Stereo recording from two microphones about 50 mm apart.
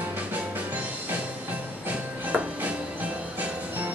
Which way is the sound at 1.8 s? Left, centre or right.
Right.